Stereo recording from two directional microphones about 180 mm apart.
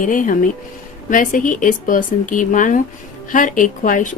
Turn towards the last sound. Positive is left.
turn(degrees=45)  # may be behind; listen again after turning